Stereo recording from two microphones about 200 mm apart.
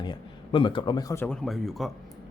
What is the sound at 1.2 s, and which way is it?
Speech, centre (ahead or behind).